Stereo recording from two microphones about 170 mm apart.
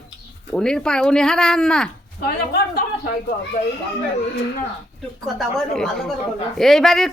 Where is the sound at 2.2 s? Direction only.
70° left (ahead or behind).